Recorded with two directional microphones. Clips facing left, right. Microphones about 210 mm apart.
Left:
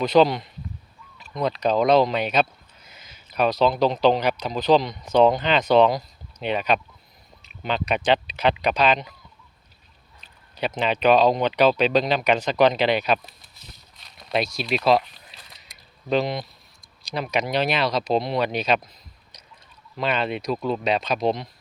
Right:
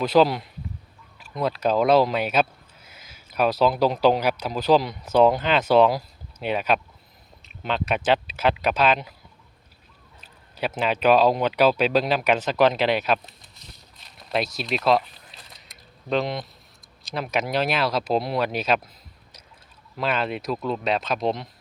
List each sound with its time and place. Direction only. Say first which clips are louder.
0.0 s speech: left 1 dB; 5° right (ahead or behind)
10.2 s speech: left 1 dB; 5° right (ahead or behind)
14.2 s a sound: left 1 dB; centre (ahead or behind)
17.0 s speech: left 1 dB; centre (ahead or behind)
20.0 s speech: left 1 dB; centre (ahead or behind)